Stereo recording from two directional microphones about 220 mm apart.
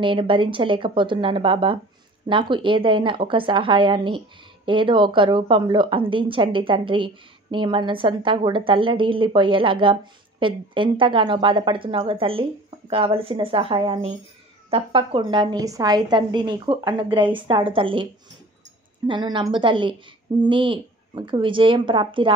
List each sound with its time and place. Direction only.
0.0 s a woman's voice: 20° right (ahead or behind)
19.0 s a woman's voice: 20° right (ahead or behind)